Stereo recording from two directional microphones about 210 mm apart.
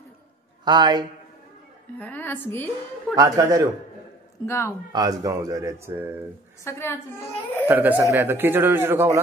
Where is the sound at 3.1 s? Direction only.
15° right (ahead or behind).